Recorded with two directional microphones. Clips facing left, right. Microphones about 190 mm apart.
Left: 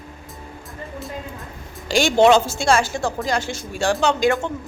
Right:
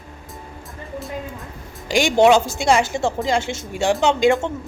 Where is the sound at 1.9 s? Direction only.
15° right (ahead or behind).